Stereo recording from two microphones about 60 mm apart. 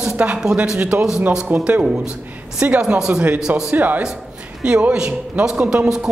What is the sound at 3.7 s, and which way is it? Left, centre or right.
Speech, right.